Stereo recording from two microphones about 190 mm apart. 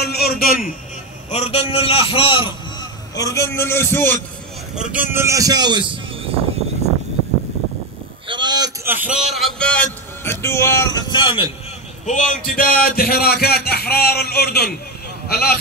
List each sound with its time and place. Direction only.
0.0 s a man's voice: 55° left (ahead or behind)
1.3 s a man's voice: 35° left (ahead or behind); by 4.2 s 10° left (ahead or behind)
4.7 s a man's voice: 10° right (ahead or behind)
8.3 s a man's voice: 25° right (ahead or behind); by 11.4 s 25° left (ahead or behind)
12.1 s a man's voice: 40° left (ahead or behind)